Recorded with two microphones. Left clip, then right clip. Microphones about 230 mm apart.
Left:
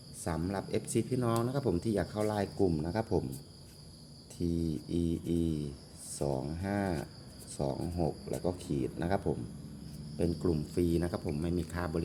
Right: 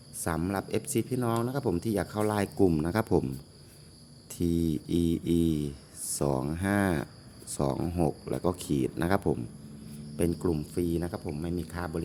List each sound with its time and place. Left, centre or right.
0.3 s speech: right
4.4 s speech: right
10.2 s cricket: right
10.8 s speech: centre